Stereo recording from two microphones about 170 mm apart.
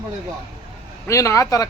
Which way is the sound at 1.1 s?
20° left (ahead or behind).